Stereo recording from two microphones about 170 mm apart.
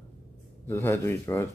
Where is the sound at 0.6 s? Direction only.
15° left (ahead or behind).